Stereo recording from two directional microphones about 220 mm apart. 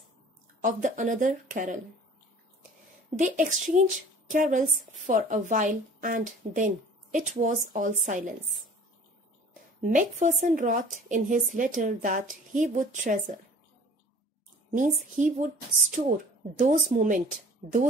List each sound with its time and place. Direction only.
0.6 s a woman's voice: 35° right (ahead or behind)
3.2 s a woman's voice: 35° right (ahead or behind)
9.8 s a woman's voice: 35° right (ahead or behind)
15.1 s a woman's voice: 35° right (ahead or behind)